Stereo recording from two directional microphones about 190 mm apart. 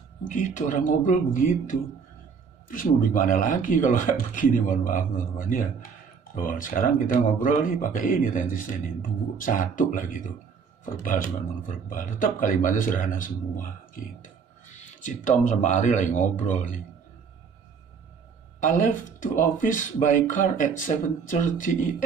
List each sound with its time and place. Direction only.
0.3 s speech: 40° left (ahead or behind)
18.6 s speech: 45° left (ahead or behind)